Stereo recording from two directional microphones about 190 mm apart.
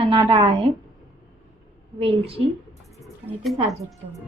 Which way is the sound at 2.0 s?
30° right (ahead or behind).